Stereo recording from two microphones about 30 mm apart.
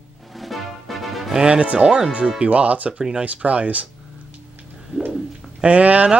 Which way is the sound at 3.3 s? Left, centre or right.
Right.